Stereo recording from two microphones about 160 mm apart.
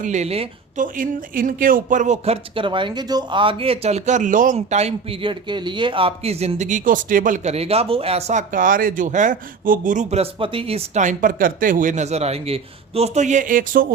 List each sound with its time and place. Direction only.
0.0 s speech: 45° right (ahead or behind)
0.8 s speech: 60° right (ahead or behind)
4.5 s speech: 40° right (ahead or behind)